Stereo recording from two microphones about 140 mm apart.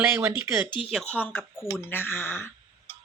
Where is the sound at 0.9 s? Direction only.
5° left (ahead or behind).